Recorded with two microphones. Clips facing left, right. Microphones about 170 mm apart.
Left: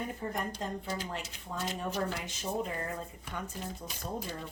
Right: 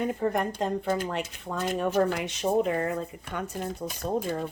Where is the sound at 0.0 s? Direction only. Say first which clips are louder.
Right 9 dB; 75° right (ahead or behind).